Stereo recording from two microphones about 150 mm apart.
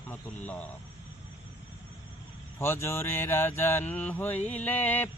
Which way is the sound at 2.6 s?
15° left (ahead or behind).